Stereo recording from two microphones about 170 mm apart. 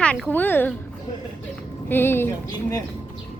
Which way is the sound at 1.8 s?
15° left (ahead or behind).